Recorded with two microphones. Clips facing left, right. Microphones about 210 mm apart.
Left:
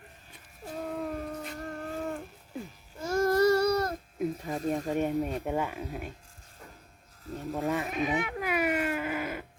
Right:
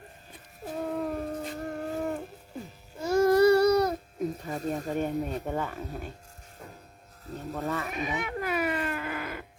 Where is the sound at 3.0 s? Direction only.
10° right (ahead or behind).